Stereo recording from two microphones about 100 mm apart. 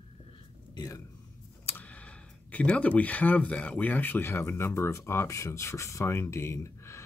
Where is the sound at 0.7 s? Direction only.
35° left (ahead or behind).